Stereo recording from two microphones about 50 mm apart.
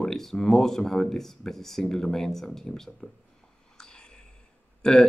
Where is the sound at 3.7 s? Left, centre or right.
Centre.